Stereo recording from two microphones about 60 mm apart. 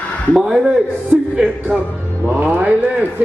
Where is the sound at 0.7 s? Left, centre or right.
Centre.